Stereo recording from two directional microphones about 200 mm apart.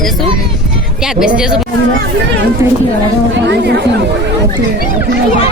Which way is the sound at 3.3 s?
60° right (ahead or behind).